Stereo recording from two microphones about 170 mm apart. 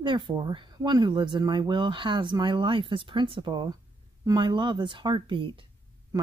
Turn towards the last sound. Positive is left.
turn(degrees=-30)  # may be behind; listen again after turning